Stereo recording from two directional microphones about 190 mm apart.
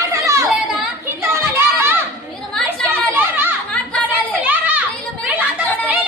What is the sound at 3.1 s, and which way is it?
Children playing, 10° right (ahead or behind).